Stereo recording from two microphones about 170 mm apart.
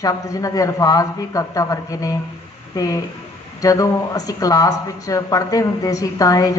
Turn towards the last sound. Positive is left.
turn(degrees=20)  # may be behind; listen again after turning